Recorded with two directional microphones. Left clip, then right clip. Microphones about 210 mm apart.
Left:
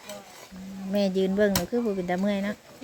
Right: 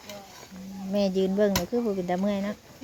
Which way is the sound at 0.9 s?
Centre (ahead or behind).